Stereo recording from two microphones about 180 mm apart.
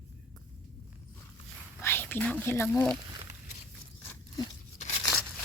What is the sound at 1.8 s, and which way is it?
Whispering, 10° left (ahead or behind).